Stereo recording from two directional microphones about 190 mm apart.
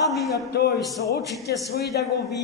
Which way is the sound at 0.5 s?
55° left (ahead or behind).